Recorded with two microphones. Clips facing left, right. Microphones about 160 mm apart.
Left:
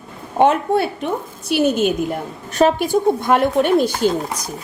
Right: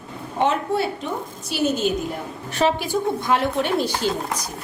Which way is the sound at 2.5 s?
45° left (ahead or behind).